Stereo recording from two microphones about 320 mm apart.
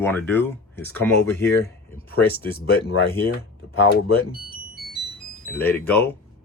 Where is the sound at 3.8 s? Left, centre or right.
Left.